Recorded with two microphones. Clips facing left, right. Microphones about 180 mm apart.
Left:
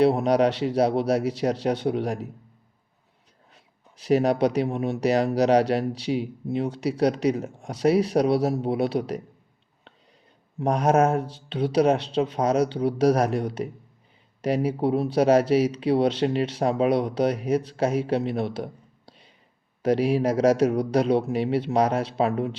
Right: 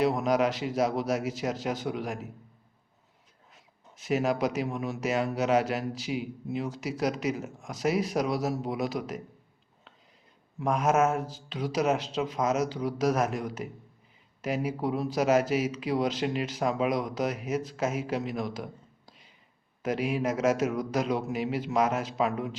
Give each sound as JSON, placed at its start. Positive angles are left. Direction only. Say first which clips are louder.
{"t": 0.0, "sound": "speech", "louder": "left 6 dB", "side_deg": 30}
{"t": 3.5, "sound": "speech", "louder": "right 1 dB", "side_deg": 35}
{"t": 10.6, "sound": "speech", "louder": "left 4 dB", "side_deg": 35}
{"t": 19.8, "sound": "speech", "louder": "left 7 dB", "side_deg": 35}